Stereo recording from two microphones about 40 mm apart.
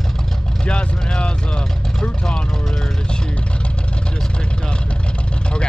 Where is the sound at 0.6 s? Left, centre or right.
Left.